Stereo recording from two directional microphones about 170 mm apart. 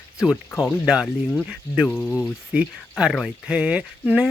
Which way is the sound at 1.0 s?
Centre (ahead or behind).